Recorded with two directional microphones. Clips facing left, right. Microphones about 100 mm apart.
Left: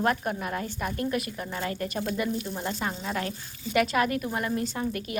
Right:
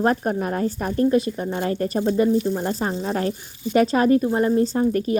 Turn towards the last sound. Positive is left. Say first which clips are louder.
# right 11 dB
turn(degrees=-35)  # may be behind; listen again after turning